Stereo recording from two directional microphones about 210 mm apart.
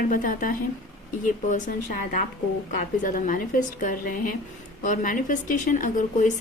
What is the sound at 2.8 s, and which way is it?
A woman's voice, 40° left (ahead or behind).